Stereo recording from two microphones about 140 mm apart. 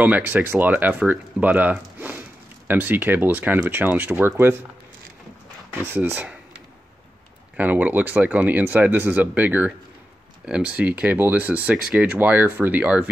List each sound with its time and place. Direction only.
0.0 s speech: 10° right (ahead or behind)
5.7 s speech: 15° right (ahead or behind)
7.5 s speech: 10° right (ahead or behind)